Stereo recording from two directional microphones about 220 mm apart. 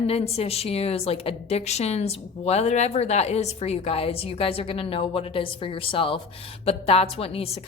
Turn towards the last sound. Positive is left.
turn(degrees=25)  # may be behind; listen again after turning